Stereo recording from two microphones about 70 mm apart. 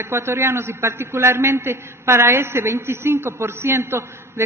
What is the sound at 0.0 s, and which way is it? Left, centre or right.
A man's voice, right.